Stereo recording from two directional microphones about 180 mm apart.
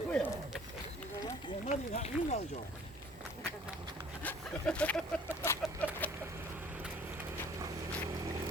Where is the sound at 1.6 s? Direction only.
40° left (ahead or behind).